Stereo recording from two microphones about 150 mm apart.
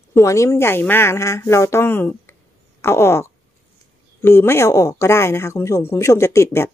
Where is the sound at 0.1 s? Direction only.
20° left (ahead or behind).